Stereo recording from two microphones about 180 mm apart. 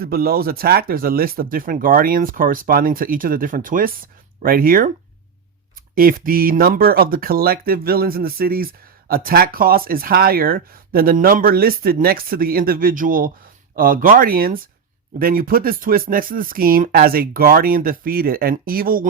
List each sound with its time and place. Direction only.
0.0 s speech: 60° right (ahead or behind)
5.9 s speech: 55° right (ahead or behind)